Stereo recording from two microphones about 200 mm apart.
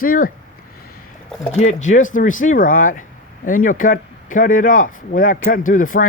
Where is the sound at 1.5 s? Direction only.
35° left (ahead or behind).